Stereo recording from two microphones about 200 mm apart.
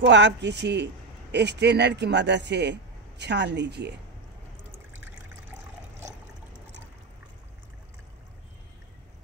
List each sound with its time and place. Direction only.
0.0 s a man's voice: 60° right (ahead or behind)